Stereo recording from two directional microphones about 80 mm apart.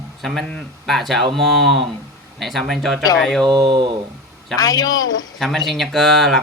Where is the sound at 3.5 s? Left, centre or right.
Right.